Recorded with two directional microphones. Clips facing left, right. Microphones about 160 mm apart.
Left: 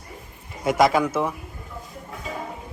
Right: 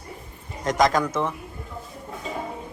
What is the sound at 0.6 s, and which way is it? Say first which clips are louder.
Speech: left 2 dB; 5° left (ahead or behind).